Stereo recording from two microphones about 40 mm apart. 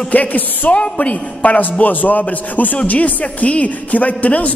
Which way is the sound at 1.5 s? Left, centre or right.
Left.